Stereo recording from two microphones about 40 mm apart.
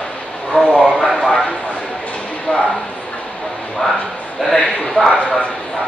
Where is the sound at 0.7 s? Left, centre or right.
Centre.